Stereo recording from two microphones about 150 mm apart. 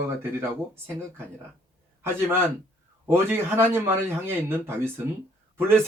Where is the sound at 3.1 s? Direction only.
15° right (ahead or behind).